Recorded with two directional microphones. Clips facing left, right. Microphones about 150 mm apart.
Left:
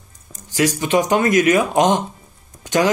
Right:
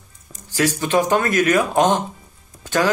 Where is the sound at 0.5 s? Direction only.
15° left (ahead or behind).